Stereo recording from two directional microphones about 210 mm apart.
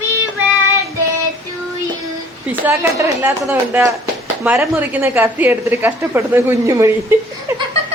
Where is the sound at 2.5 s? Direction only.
10° right (ahead or behind).